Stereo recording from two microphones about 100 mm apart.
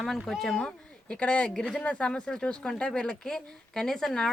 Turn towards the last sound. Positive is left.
turn(degrees=5)  # may be behind; listen again after turning